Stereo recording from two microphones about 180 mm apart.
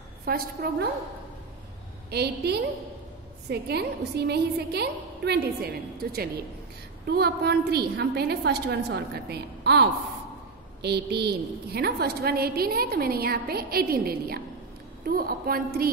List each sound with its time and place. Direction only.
0.2 s a woman's voice: 55° right (ahead or behind)
2.0 s a woman's voice: 65° right (ahead or behind)